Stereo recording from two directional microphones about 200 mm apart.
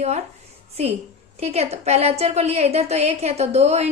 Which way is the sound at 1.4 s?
30° right (ahead or behind).